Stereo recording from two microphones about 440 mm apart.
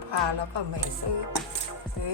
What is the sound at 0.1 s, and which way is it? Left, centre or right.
Speech, right.